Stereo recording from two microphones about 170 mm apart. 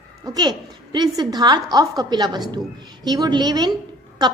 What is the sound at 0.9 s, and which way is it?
A woman's voice, 25° right (ahead or behind).